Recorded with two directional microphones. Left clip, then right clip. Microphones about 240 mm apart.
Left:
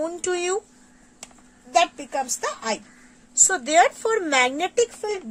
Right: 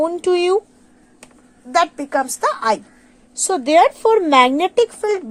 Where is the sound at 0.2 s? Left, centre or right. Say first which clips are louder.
Right 9 dB; centre.